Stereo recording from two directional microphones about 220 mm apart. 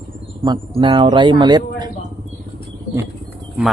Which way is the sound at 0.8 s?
20° right (ahead or behind).